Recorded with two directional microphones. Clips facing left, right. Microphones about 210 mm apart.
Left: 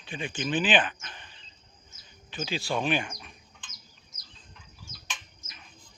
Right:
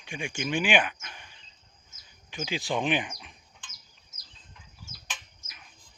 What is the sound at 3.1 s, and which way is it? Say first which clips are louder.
Bird: left 1 dB; 15° right (ahead or behind).